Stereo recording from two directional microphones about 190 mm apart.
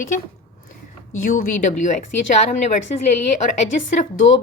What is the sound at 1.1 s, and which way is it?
Speech, 45° left (ahead or behind).